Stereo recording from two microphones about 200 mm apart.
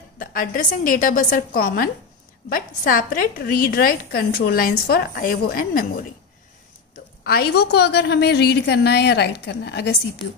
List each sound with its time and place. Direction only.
0.2 s a woman's voice: 45° left (ahead or behind)
7.2 s a woman's voice: 50° left (ahead or behind)